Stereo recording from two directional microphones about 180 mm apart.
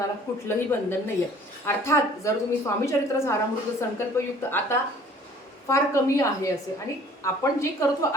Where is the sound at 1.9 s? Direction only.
15° left (ahead or behind).